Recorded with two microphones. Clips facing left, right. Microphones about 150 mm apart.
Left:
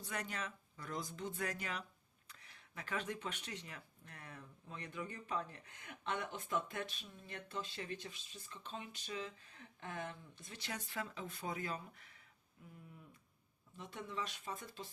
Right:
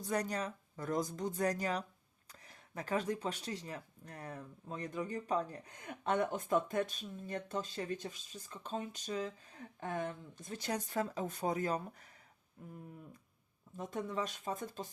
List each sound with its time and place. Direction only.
0.0 s speech: 40° right (ahead or behind)
13.7 s speech: 45° right (ahead or behind)